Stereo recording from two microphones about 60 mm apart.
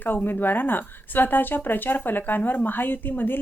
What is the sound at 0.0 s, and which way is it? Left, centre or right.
A woman's voice, left.